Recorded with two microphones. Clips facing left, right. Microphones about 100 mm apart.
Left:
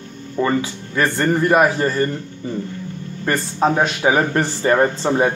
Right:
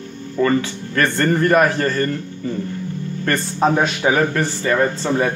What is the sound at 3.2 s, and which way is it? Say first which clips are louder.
Speech: even; 5° left (ahead or behind).